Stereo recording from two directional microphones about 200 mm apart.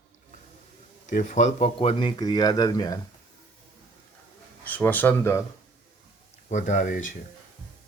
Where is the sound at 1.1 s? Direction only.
35° left (ahead or behind); by 2.9 s 20° left (ahead or behind).